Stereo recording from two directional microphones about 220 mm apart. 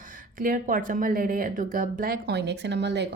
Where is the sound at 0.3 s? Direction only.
40° right (ahead or behind).